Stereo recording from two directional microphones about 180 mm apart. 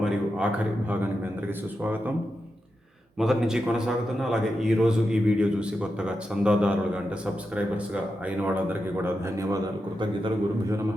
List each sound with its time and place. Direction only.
0.0 s a sound: 5° right (ahead or behind)
1.5 s speech: 10° right (ahead or behind)
3.2 s a man's voice: centre (ahead or behind)
10.0 s a man's voice: 25° right (ahead or behind)